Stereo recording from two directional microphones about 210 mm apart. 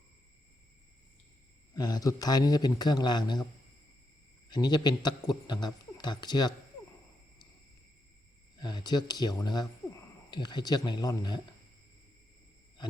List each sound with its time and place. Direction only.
1.7 s speech: 20° left (ahead or behind)
4.4 s speech: 20° left (ahead or behind)
8.5 s speech: 20° left (ahead or behind)